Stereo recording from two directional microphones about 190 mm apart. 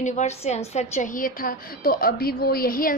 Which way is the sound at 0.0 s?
35° left (ahead or behind).